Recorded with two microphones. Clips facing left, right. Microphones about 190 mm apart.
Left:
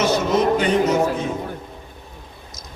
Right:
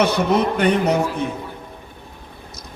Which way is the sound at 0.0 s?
60° right (ahead or behind).